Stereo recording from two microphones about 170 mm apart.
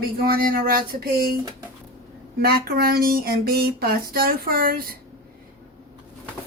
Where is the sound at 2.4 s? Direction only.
65° right (ahead or behind).